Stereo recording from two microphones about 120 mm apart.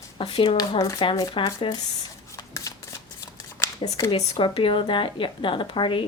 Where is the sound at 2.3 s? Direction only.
25° left (ahead or behind).